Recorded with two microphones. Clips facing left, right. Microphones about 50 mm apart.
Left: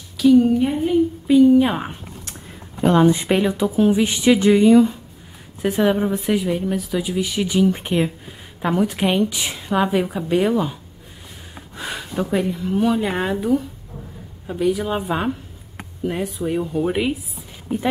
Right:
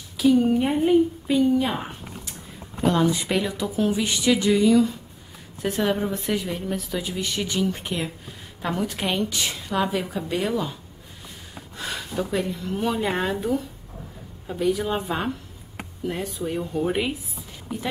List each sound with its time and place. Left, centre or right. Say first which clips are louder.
0.2 s a woman's voice: left 5 dB; centre
1.6 s a woman's voice: left 7 dB; left
5.6 s a woman's voice: left 5 dB; centre
12.7 s speech: left 5 dB; centre